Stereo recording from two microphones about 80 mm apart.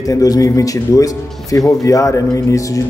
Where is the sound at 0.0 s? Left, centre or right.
Left.